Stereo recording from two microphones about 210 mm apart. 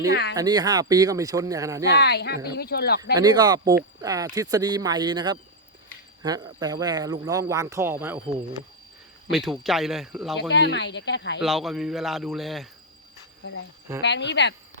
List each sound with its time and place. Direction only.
0.1 s speech: 50° left (ahead or behind)
0.3 s speech: 20° right (ahead or behind)
2.0 s speech: 50° left (ahead or behind)
3.2 s speech: 20° right (ahead or behind)
9.3 s speech: centre (ahead or behind)
10.5 s speech: 55° left (ahead or behind)
11.3 s speech: centre (ahead or behind)
14.0 s speech: 55° left (ahead or behind)